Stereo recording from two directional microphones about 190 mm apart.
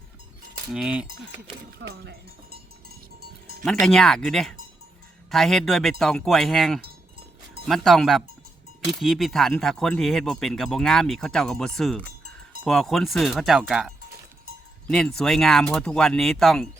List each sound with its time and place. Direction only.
0.7 s speech: 5° right (ahead or behind)
1.9 s speech: 55° right (ahead or behind)
3.6 s speech: centre (ahead or behind)
6.8 s cowbell: 55° right (ahead or behind)
7.7 s speech: centre (ahead or behind)